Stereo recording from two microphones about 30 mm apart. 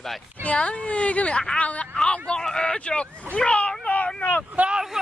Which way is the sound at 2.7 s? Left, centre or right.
Left.